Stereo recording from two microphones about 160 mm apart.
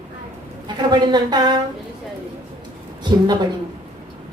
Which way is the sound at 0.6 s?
25° right (ahead or behind).